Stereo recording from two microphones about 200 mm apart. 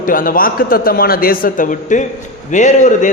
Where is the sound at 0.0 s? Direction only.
45° left (ahead or behind).